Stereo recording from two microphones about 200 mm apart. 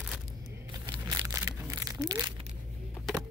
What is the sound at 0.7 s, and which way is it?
Crumpling, 15° right (ahead or behind).